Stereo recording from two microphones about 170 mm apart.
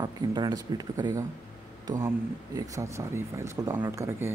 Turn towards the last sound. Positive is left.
turn(degrees=-15)  # may be behind; listen again after turning